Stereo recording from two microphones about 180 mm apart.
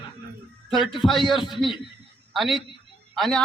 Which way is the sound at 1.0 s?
Centre (ahead or behind).